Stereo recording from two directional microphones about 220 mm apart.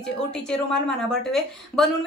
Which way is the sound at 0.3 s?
5° left (ahead or behind).